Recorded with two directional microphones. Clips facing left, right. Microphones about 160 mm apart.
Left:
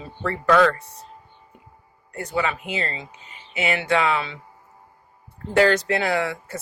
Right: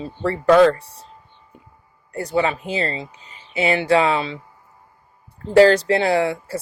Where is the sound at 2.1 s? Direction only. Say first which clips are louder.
Right 5 dB; 30° right (ahead or behind).